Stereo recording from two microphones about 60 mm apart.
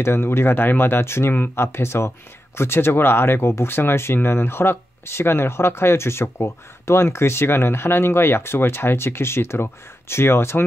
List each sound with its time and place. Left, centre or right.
0.0 s speech: left